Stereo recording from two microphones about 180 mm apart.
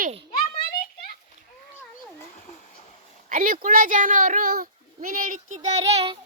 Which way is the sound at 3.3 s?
50° right (ahead or behind).